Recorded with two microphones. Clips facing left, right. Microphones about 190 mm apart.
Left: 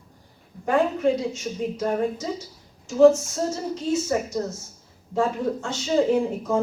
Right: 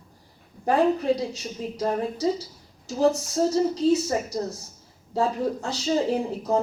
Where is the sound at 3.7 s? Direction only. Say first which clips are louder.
Right 2 dB; 35° right (ahead or behind).